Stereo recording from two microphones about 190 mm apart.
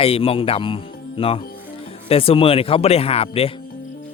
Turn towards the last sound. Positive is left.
turn(degrees=30)  # may be behind; listen again after turning